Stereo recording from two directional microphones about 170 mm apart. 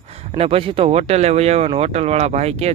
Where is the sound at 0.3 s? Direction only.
35° right (ahead or behind).